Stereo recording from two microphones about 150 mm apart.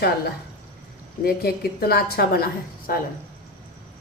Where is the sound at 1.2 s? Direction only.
90° left.